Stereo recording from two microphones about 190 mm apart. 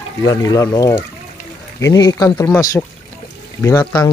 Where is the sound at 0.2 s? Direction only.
20° left (ahead or behind).